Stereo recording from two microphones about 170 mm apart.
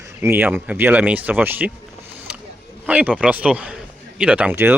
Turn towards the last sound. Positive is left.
turn(degrees=-10)  # may be behind; listen again after turning